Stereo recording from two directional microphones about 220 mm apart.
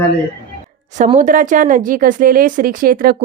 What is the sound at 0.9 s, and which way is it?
A woman's voice, 30° right (ahead or behind).